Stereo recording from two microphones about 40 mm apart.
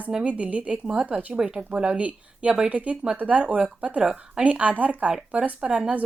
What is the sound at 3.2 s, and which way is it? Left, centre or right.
A woman's voice, right.